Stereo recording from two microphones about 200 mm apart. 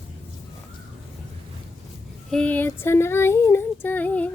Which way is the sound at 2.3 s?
5° left (ahead or behind).